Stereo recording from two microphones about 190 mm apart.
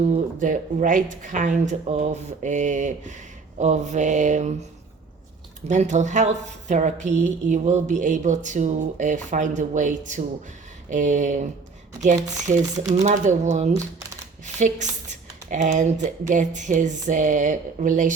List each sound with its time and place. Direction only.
0.1 s speech: 45° right (ahead or behind)
5.6 s speech: 40° right (ahead or behind)